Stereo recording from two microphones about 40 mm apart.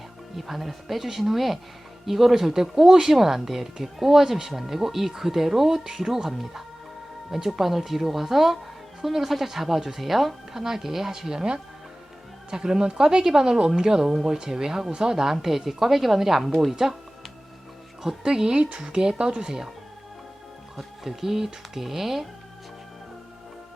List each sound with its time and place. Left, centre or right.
0.3 s speech: centre
18.2 s speech: centre
20.7 s speech: centre